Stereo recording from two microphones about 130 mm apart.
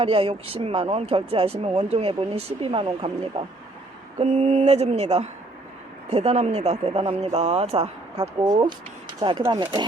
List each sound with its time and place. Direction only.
0.0 s speech: 45° right (ahead or behind)
4.2 s speech: 55° right (ahead or behind)
8.4 s speech: 30° right (ahead or behind)